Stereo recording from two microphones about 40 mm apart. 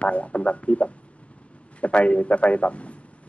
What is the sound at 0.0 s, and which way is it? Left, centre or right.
A man's voice, left.